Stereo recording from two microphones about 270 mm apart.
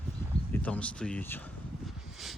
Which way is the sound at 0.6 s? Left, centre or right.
Centre.